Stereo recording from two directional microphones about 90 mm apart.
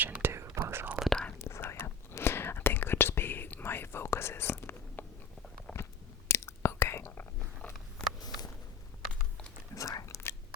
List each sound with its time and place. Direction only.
0.0 s whispering: 25° right (ahead or behind)
1.0 s whispering: 5° left (ahead or behind)
1.4 s whispering: 30° left (ahead or behind)
8.0 s a sound: 10° left (ahead or behind)
9.7 s whispering: 40° left (ahead or behind)